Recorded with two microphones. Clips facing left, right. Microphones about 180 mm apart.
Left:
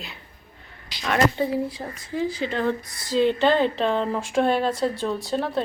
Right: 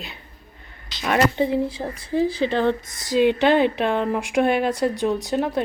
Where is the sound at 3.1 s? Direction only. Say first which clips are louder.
Right 2 dB; 15° right (ahead or behind).